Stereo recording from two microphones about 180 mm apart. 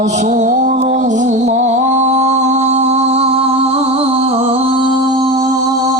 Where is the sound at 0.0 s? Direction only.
40° right (ahead or behind); by 5.7 s 20° right (ahead or behind).